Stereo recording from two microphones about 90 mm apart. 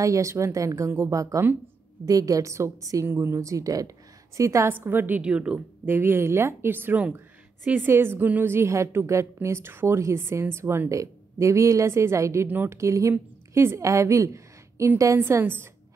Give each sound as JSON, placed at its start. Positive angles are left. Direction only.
{"t": 0.0, "sound": "speech", "side_deg": -35}
{"t": 4.7, "sound": "a woman's voice", "side_deg": -20}
{"t": 5.9, "sound": "a woman's voice", "side_deg": -25}
{"t": 12.4, "sound": "a woman's voice", "side_deg": -20}
{"t": 12.8, "sound": "a woman's voice", "side_deg": -35}